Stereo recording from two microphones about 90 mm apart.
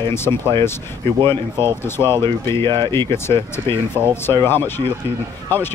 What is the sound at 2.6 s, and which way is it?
Speech, 60° right (ahead or behind).